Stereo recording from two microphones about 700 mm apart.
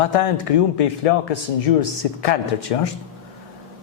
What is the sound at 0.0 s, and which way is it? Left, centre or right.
A man's voice, left.